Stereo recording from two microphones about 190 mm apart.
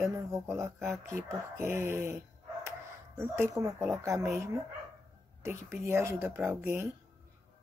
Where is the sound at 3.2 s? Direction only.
15° right (ahead or behind).